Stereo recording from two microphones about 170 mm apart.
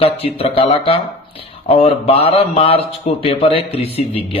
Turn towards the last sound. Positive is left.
turn(degrees=35)  # may be behind; listen again after turning